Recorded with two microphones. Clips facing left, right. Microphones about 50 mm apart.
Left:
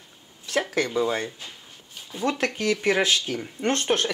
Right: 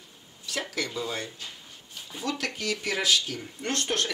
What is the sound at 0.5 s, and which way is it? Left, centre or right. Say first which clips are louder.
Speech: left 7 dB; left.